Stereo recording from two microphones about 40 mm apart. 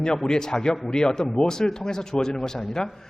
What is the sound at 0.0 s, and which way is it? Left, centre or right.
A man's voice, centre.